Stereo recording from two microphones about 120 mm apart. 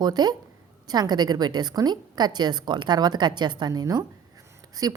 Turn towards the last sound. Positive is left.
turn(degrees=-30)  # may be behind; listen again after turning